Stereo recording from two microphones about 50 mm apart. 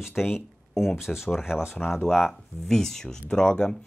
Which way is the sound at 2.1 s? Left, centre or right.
Centre.